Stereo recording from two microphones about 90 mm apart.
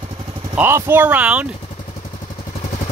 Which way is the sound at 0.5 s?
30° right (ahead or behind).